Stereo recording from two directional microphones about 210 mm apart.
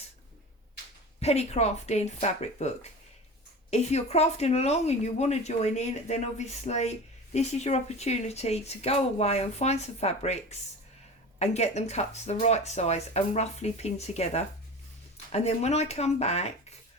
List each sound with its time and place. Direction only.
1.2 s speech: 30° left (ahead or behind)